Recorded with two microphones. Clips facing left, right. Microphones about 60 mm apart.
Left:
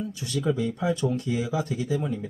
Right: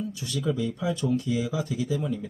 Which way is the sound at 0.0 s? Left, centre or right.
Left.